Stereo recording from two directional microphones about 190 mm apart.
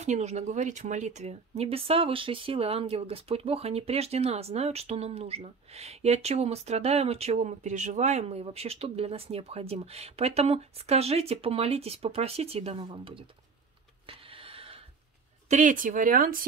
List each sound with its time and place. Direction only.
0.0 s speech: 35° right (ahead or behind)
14.0 s a sound: 30° right (ahead or behind)
15.4 s speech: 40° right (ahead or behind)